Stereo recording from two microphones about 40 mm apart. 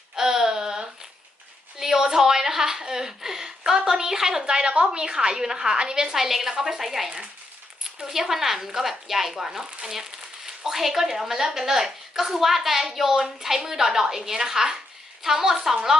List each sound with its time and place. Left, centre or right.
0.2 s a sound: centre
1.8 s a woman's voice: centre
3.6 s a woman's voice: right
4.4 s a woman's voice: right; by 7.1 s centre
8.1 s a woman's voice: centre